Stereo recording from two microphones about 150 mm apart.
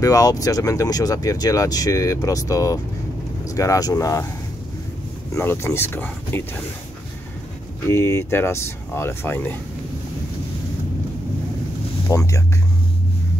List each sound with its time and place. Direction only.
0.0 s speech: 25° left (ahead or behind)
5.3 s speech: 15° left (ahead or behind)
7.8 s speech: 15° left (ahead or behind)
12.1 s speech: 20° left (ahead or behind)